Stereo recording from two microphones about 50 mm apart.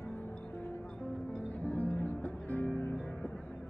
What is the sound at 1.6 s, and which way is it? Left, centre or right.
Music, left.